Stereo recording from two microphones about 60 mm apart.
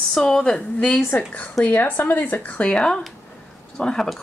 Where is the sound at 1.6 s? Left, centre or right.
Left.